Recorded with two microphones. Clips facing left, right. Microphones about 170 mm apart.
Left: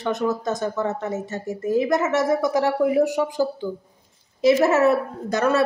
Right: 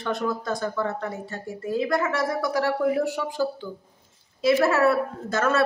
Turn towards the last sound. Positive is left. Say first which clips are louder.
# left 3 dB
turn(degrees=15)  # may be behind; listen again after turning